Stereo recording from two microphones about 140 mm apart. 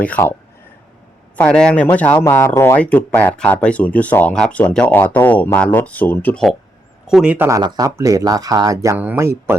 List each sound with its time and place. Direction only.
0.0 s speech: 15° left (ahead or behind)
1.4 s speech: 10° left (ahead or behind)
7.1 s speech: 5° right (ahead or behind)
7.6 s speech: 25° right (ahead or behind)